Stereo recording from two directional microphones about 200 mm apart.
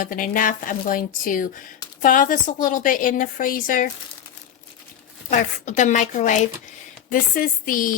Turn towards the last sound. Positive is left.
turn(degrees=45)  # may be behind; listen again after turning